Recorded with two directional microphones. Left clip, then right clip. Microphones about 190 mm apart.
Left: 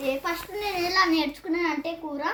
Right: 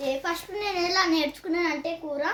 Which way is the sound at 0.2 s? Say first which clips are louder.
Even; 25° right (ahead or behind).